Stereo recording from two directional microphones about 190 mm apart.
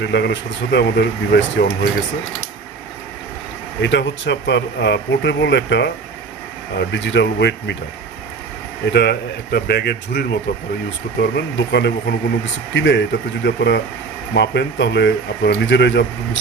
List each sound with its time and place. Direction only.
0.0 s speech: 65° left (ahead or behind)
3.8 s speech: 70° left (ahead or behind)
8.9 s speech: 60° left (ahead or behind)